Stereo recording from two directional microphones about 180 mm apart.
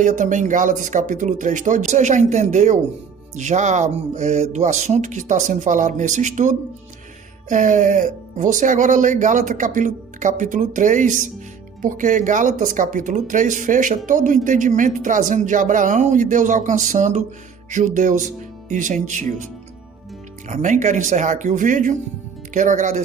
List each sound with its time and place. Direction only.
0.0 s speech: 45° right (ahead or behind)
20.5 s speech: 45° right (ahead or behind)